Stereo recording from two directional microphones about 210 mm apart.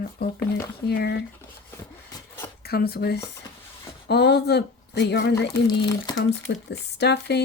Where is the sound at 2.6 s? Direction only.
50° left (ahead or behind).